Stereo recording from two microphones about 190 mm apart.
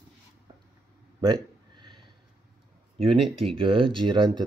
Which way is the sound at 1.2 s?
25° right (ahead or behind).